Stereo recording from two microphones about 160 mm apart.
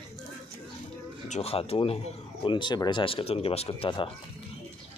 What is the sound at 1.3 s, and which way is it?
Speech, 40° left (ahead or behind).